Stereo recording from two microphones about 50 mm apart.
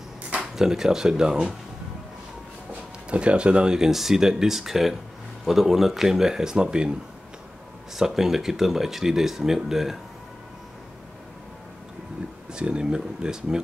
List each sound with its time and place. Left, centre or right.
0.4 s speech: centre
3.1 s speech: right
7.9 s speech: centre
12.5 s speech: centre